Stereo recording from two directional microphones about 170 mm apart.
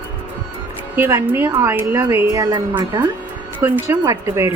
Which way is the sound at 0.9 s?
15° right (ahead or behind).